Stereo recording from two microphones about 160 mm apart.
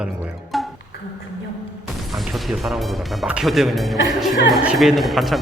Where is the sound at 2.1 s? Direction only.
Centre (ahead or behind).